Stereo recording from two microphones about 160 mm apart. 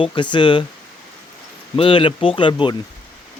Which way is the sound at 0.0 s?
30° left (ahead or behind).